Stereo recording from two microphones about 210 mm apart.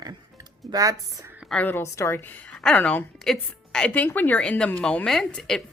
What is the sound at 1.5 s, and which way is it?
A woman's voice, 5° left (ahead or behind).